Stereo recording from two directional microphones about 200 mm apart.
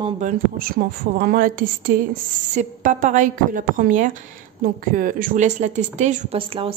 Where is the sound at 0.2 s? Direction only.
40° right (ahead or behind).